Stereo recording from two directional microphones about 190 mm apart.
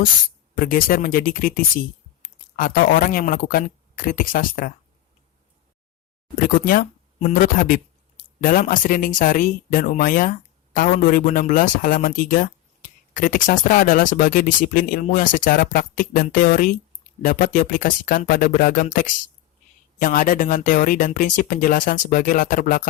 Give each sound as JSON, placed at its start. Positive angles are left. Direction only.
{"t": 0.5, "sound": "speech", "side_deg": 50}
{"t": 6.4, "sound": "speech", "side_deg": 50}